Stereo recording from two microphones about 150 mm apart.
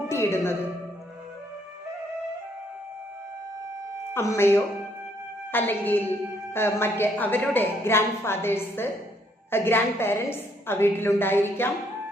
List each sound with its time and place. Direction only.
0.1 s a woman's voice: 15° left (ahead or behind)
4.1 s a woman's voice: 20° left (ahead or behind)